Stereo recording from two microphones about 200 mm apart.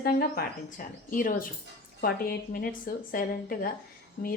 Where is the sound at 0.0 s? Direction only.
45° left (ahead or behind).